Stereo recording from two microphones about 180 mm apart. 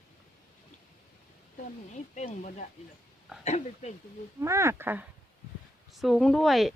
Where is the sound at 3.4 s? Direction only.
40° left (ahead or behind).